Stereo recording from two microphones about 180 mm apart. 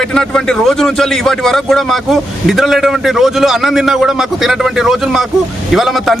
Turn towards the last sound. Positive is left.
turn(degrees=0)  # may be behind; listen again after turning